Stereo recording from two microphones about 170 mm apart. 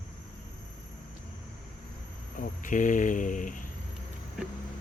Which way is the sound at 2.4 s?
50° left (ahead or behind).